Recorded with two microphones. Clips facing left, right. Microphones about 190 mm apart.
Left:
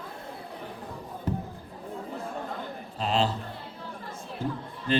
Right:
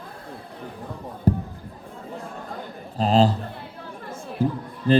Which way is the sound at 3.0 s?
40° right (ahead or behind).